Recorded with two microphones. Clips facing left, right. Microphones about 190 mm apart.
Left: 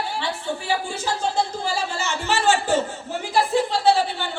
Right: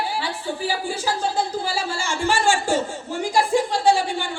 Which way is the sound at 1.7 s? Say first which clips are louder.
Even; 10° right (ahead or behind).